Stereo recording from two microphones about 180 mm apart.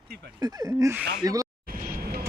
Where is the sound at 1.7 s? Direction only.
55° right (ahead or behind).